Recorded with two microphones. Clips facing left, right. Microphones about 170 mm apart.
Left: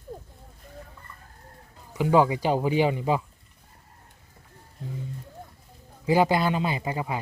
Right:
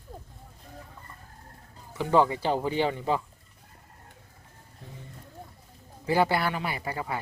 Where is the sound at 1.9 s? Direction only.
15° left (ahead or behind).